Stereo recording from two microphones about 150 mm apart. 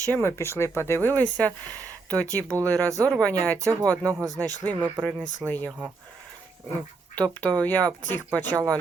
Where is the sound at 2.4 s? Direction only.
20° right (ahead or behind).